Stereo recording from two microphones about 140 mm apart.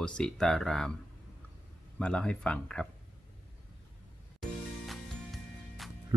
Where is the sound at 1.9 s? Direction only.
10° left (ahead or behind).